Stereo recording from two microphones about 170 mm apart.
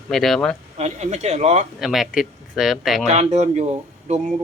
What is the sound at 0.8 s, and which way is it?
Speech, 40° right (ahead or behind).